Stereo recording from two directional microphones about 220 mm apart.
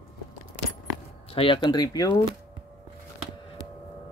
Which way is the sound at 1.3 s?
20° left (ahead or behind).